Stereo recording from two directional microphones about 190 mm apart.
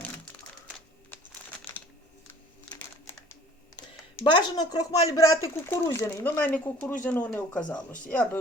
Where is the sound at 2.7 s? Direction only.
5° left (ahead or behind).